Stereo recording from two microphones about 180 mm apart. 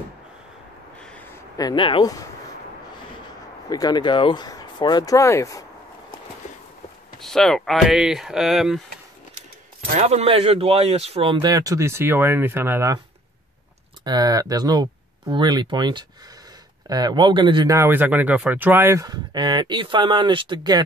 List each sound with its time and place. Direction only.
1.6 s speech: 25° left (ahead or behind)
3.7 s speech: 20° left (ahead or behind)
7.2 s speech: centre (ahead or behind)
9.9 s speech: 40° right (ahead or behind); by 13.0 s 15° right (ahead or behind)
14.0 s speech: 20° right (ahead or behind)